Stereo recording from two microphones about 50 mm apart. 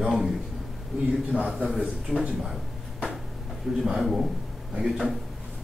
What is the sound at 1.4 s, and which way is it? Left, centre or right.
Speech, centre.